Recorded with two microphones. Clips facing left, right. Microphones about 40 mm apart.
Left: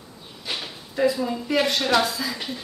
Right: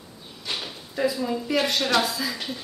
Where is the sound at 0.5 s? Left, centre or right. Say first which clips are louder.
Even; centre.